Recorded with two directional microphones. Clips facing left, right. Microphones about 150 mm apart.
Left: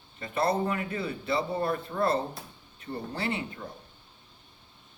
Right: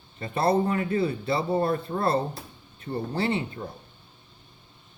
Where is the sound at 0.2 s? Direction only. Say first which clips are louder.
Right 4 dB; 30° right (ahead or behind).